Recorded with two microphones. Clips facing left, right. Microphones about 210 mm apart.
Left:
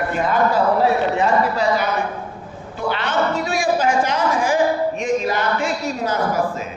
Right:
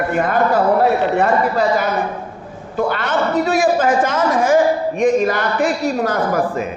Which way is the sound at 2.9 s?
50° right (ahead or behind).